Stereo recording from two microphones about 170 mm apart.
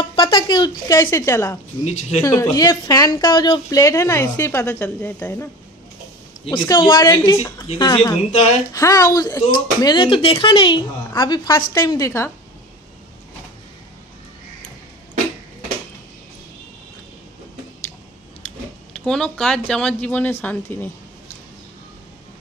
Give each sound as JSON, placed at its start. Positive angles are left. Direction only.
{"t": 0.1, "sound": "speech", "side_deg": 30}
{"t": 1.9, "sound": "speech", "side_deg": 40}
{"t": 2.2, "sound": "speech", "side_deg": 20}
{"t": 6.4, "sound": "speech", "side_deg": 25}
{"t": 18.9, "sound": "speech", "side_deg": 5}